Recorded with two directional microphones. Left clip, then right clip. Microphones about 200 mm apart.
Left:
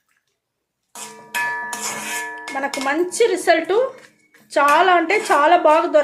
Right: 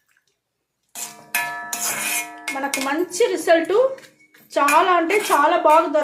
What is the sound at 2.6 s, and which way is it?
Speech, 30° left (ahead or behind).